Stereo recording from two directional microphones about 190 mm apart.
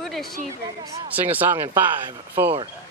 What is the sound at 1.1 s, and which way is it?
Speech, 10° right (ahead or behind).